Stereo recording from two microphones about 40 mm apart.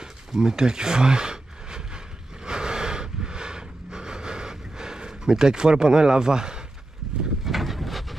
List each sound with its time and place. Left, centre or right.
0.3 s speech: centre
2.4 s a sound: right
7.4 s boat: centre